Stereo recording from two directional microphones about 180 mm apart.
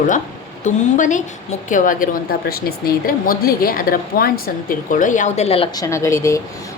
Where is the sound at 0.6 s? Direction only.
45° left (ahead or behind).